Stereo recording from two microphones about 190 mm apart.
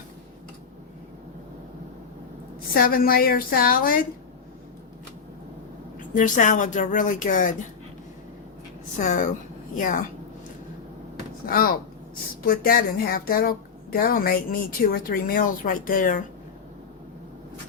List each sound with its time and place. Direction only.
2.7 s a woman's voice: 50° left (ahead or behind)
6.1 s speech: 40° left (ahead or behind)
9.0 s a woman's voice: 40° left (ahead or behind)
11.4 s a woman's voice: 50° left (ahead or behind)